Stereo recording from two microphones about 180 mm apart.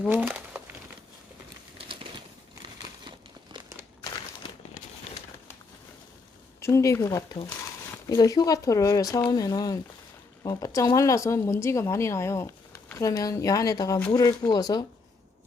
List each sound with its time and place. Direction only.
0.1 s speech: 10° right (ahead or behind)
1.9 s bird: 30° right (ahead or behind)
3.0 s a sound: 25° right (ahead or behind)
6.6 s speech: 15° left (ahead or behind)